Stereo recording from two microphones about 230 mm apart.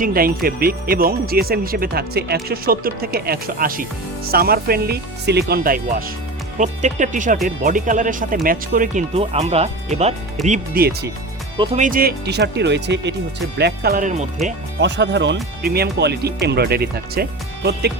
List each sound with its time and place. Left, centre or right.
0.0 s speech: right
11.5 s speech: right
11.8 s speech: right
14.8 s speech: right